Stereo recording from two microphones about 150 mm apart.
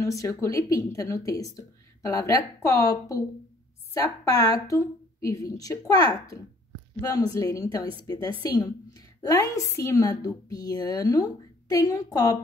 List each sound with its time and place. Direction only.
0.0 s a woman's voice: 20° left (ahead or behind)